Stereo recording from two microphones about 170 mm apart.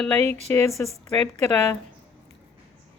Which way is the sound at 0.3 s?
40° right (ahead or behind).